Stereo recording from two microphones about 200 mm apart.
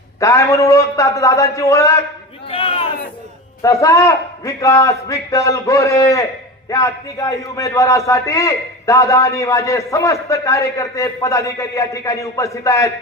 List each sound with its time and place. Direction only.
0.2 s a man's voice: 15° left (ahead or behind)
2.5 s a sound: 30° left (ahead or behind)
3.6 s a man's voice: 15° left (ahead or behind)